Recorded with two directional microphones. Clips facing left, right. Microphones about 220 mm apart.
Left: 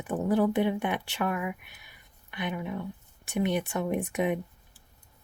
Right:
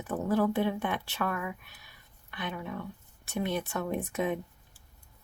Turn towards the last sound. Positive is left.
turn(degrees=15)  # may be behind; listen again after turning